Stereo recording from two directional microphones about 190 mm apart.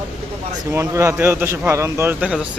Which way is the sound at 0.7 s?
15° right (ahead or behind).